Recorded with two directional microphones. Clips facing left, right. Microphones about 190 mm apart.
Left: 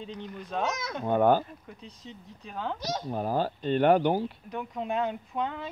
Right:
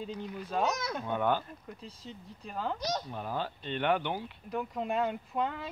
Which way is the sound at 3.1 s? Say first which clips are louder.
Left 7 dB; 40° left (ahead or behind).